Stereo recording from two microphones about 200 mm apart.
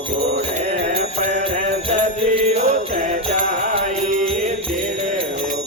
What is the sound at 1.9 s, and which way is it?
Jingle bell, 30° right (ahead or behind).